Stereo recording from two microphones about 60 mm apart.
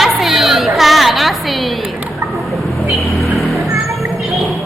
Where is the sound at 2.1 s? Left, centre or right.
Right.